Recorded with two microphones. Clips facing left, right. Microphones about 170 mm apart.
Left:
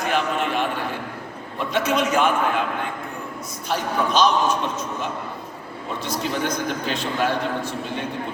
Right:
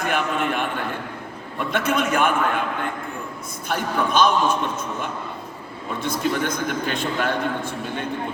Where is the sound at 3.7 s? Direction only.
55° right (ahead or behind).